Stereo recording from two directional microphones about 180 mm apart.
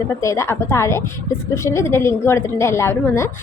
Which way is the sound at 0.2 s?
15° left (ahead or behind).